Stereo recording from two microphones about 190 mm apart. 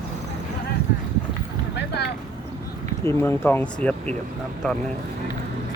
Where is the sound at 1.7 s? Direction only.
60° left (ahead or behind).